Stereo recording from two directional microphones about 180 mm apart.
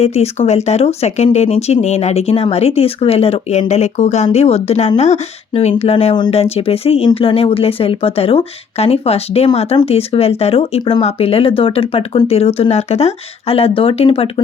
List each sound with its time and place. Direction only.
0.0 s speech: 35° left (ahead or behind)